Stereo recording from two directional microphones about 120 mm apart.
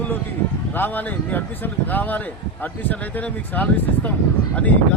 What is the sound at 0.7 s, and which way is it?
Speech, 15° left (ahead or behind).